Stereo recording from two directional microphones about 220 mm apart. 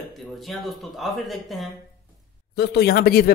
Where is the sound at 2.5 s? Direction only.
45° left (ahead or behind).